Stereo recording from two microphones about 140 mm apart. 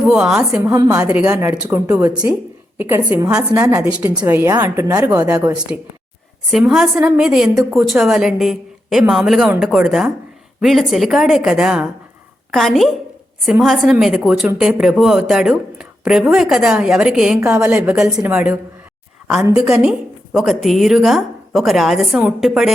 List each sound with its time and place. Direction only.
0.1 s a woman's voice: 5° right (ahead or behind)
4.9 s a woman's voice: 25° right (ahead or behind)
6.5 s a woman's voice: 5° right (ahead or behind)
19.5 s a woman's voice: 5° right (ahead or behind)